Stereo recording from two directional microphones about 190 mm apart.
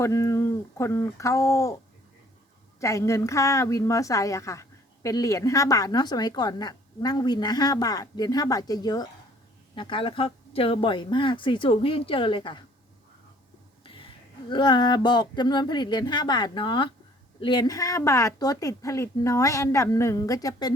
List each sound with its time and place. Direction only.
0.0 s speech: 15° left (ahead or behind)
2.8 s a woman's voice: 15° left (ahead or behind)
14.5 s a woman's voice: 25° left (ahead or behind)